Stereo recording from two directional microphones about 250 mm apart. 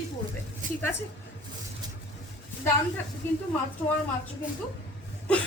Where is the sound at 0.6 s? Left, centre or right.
Right.